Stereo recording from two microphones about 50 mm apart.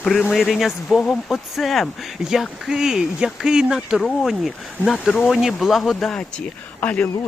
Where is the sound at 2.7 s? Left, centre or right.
Centre.